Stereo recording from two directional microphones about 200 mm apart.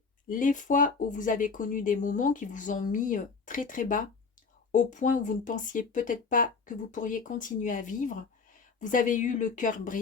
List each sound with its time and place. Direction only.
0.3 s speech: 40° left (ahead or behind)